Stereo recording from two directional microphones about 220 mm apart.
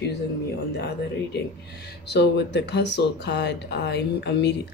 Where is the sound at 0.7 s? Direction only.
50° left (ahead or behind).